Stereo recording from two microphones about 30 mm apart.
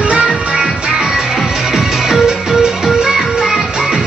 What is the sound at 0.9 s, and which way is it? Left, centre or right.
Music, centre.